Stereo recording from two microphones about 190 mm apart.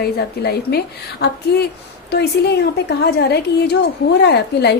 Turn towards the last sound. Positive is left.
turn(degrees=60)  # may be behind; listen again after turning